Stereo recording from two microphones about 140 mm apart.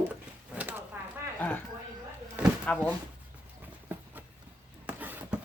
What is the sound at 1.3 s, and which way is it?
Speech, 10° left (ahead or behind).